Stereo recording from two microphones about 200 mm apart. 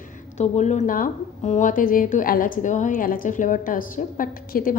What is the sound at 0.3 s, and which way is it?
A woman's voice, 35° left (ahead or behind).